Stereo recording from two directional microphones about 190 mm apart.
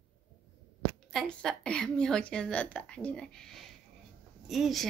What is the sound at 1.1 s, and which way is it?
A woman's voice, centre (ahead or behind).